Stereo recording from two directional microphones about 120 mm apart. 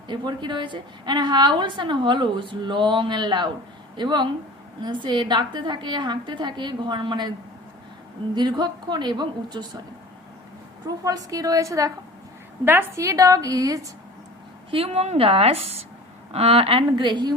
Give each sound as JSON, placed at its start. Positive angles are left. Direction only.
{"t": 0.1, "sound": "a woman's voice", "side_deg": -40}
{"t": 8.4, "sound": "a woman's voice", "side_deg": -35}
{"t": 10.8, "sound": "a woman's voice", "side_deg": -30}
{"t": 14.7, "sound": "a woman's voice", "side_deg": -55}